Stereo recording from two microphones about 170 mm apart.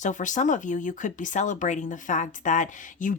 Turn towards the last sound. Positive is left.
turn(degrees=45)  # may be behind; listen again after turning